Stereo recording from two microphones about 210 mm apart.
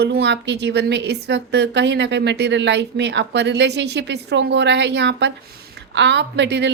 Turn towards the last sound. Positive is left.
turn(degrees=-55)  # may be behind; listen again after turning